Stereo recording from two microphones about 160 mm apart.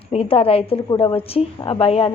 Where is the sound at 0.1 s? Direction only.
35° left (ahead or behind).